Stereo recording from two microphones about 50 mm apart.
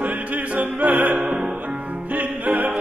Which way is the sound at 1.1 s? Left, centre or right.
Right.